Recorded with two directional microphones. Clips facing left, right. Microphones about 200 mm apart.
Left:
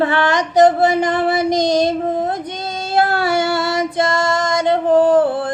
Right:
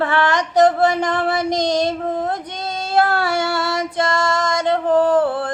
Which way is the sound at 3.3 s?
20° left (ahead or behind).